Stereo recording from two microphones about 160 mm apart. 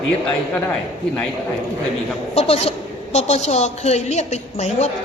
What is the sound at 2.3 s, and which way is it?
A woman's voice, 40° left (ahead or behind).